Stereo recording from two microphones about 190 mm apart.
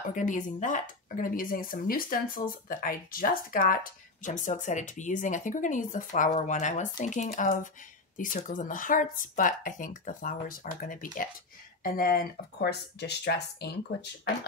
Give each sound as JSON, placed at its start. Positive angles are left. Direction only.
{"t": 0.1, "sound": "speech", "side_deg": 40}